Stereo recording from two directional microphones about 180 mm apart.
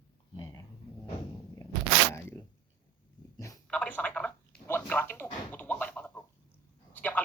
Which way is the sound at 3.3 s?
15° left (ahead or behind).